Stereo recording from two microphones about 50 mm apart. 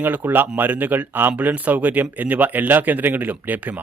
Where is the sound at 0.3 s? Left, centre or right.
Right.